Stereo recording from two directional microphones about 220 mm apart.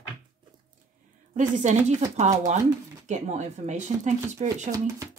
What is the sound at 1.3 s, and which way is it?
Speech, 35° right (ahead or behind).